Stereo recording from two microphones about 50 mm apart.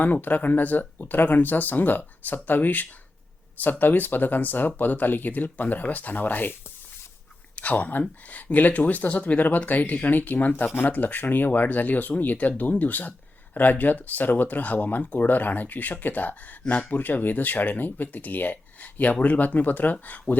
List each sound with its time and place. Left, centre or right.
0.0 s speech: left
7.5 s speech: left